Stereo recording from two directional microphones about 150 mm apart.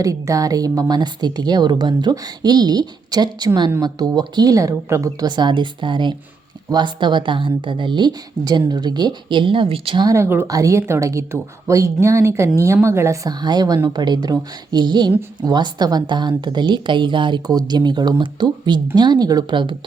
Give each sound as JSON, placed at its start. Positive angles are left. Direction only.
{"t": 0.0, "sound": "a woman's voice", "side_deg": -20}
{"t": 10.1, "sound": "a woman's voice", "side_deg": -15}